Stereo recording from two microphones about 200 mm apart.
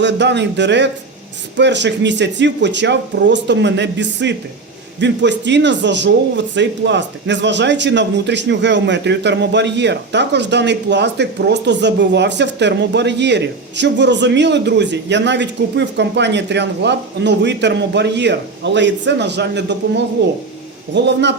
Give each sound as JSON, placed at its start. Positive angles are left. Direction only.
{"t": 0.0, "sound": "a man's voice", "side_deg": -60}